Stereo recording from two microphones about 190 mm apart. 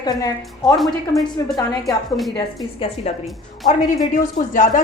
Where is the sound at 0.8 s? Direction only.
Centre (ahead or behind).